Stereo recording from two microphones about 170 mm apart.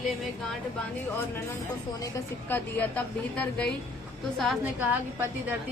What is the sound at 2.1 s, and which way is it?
A woman's voice, 10° left (ahead or behind).